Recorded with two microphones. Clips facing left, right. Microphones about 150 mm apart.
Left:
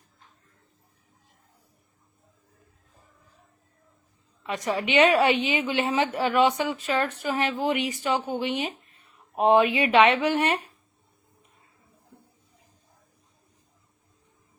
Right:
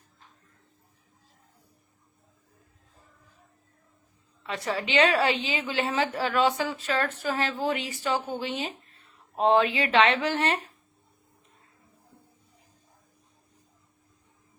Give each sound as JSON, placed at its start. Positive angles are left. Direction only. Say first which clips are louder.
{"t": 4.4, "sound": "a woman's voice", "louder": "left 3 dB", "side_deg": 20}